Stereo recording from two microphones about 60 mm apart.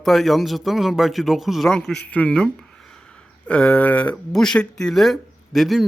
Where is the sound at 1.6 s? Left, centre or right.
Centre.